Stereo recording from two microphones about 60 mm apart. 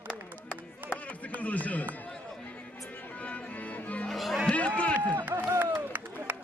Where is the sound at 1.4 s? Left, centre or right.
Left.